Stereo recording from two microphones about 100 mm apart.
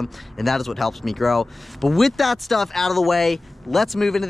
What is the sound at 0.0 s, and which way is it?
Speech, centre (ahead or behind).